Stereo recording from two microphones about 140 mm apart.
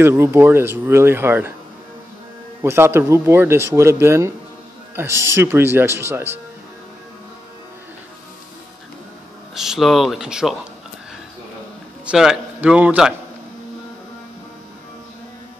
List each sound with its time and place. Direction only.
0.0 s speech: 20° right (ahead or behind)
2.6 s speech: 15° right (ahead or behind)
9.6 s speech: centre (ahead or behind)
12.1 s speech: 5° right (ahead or behind)